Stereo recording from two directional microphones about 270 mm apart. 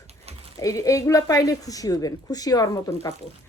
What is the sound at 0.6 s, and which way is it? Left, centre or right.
A woman's voice, centre.